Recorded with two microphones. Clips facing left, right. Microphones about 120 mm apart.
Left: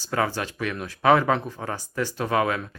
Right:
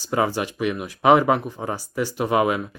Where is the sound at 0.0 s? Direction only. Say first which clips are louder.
Right 3 dB; 15° right (ahead or behind).